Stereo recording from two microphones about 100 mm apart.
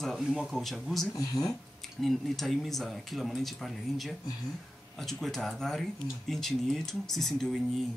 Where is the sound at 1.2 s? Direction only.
35° left (ahead or behind).